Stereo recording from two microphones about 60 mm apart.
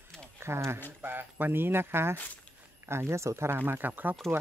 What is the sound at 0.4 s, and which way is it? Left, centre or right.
Speech, right.